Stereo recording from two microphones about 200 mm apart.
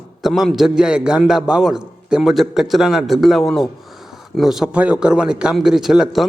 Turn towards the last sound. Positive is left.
turn(degrees=0)  # may be behind; listen again after turning